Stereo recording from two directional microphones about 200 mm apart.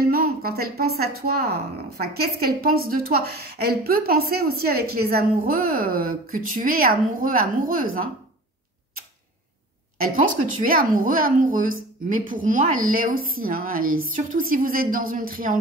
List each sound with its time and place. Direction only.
0.0 s a sound: 50° right (ahead or behind)
1.2 s a woman's voice: 50° right (ahead or behind)
9.9 s a woman's voice: 45° right (ahead or behind)